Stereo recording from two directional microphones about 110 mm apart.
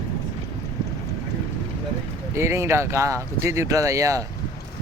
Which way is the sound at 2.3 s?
25° right (ahead or behind).